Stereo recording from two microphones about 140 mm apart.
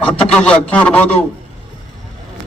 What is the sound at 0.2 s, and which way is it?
A man's voice, 10° left (ahead or behind).